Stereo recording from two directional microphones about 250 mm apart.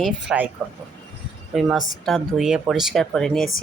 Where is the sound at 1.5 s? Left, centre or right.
Centre.